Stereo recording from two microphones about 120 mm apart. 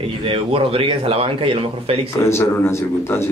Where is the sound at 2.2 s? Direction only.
25° left (ahead or behind).